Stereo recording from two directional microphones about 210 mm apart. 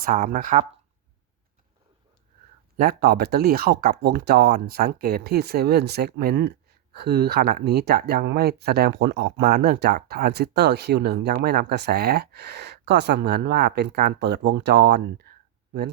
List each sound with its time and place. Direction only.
0.0 s speech: 40° right (ahead or behind)
2.7 s speech: 45° right (ahead or behind)